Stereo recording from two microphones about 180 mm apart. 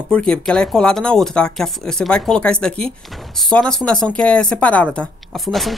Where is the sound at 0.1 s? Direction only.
5° left (ahead or behind).